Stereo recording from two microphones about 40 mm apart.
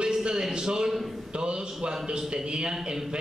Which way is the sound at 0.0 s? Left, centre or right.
Right.